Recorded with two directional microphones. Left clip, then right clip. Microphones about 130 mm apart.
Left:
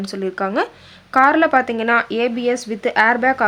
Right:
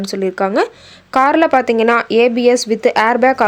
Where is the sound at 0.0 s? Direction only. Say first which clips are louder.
Right 5 dB; 35° right (ahead or behind).